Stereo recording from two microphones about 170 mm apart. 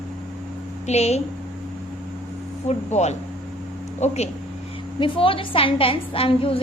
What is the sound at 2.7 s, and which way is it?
A woman's voice, 40° left (ahead or behind).